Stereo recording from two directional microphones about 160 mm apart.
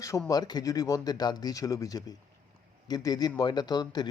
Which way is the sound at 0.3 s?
25° left (ahead or behind).